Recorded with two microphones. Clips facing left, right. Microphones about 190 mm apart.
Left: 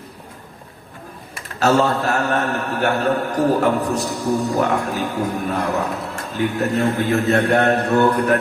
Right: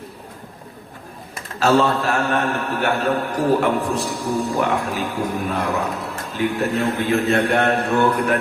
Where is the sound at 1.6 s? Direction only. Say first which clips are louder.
Even; 40° left (ahead or behind).